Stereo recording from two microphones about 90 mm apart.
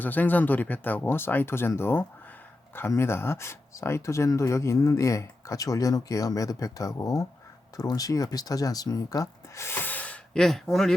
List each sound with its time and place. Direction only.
0.0 s speech: 20° left (ahead or behind); by 9.6 s 40° left (ahead or behind)
9.6 s gasp: 20° left (ahead or behind)
10.4 s speech: 5° left (ahead or behind)